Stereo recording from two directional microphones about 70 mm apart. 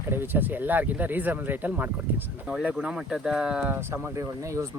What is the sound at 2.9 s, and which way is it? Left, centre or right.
Speech, centre.